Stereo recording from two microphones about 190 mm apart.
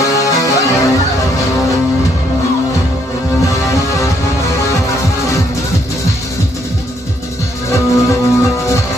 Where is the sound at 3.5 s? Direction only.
15° left (ahead or behind).